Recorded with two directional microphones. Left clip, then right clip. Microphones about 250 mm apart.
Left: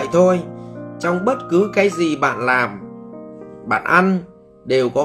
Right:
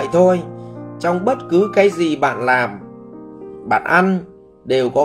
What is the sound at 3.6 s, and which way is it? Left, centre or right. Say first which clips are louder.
Speech: right 1 dB; centre.